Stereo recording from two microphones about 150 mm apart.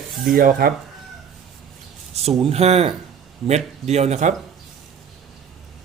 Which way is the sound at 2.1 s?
45° right (ahead or behind).